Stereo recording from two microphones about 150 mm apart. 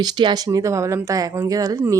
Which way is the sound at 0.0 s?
30° right (ahead or behind).